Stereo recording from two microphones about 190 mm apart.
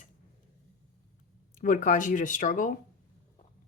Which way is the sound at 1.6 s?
45° left (ahead or behind).